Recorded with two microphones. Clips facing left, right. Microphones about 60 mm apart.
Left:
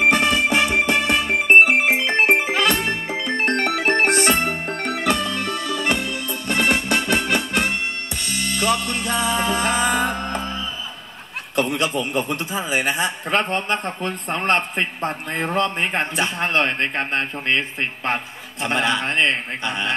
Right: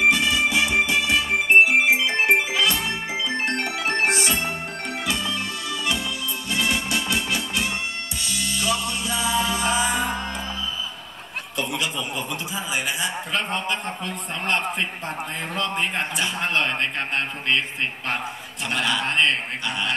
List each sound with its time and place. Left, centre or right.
0.0 s music: left
11.5 s a man's voice: left